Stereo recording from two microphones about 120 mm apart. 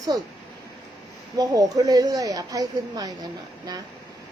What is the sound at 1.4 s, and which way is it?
Speech, 30° right (ahead or behind).